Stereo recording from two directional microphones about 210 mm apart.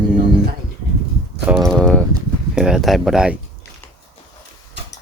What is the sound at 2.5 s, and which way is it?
Speech, centre (ahead or behind).